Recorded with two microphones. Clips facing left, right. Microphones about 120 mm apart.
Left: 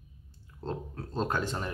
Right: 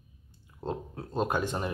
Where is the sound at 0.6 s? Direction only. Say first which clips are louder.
Right 2 dB; 15° right (ahead or behind).